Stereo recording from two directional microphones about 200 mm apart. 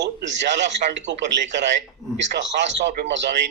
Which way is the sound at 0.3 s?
60° right (ahead or behind).